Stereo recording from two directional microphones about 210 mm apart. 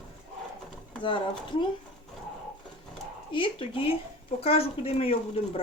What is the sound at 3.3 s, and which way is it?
Speech, 25° left (ahead or behind).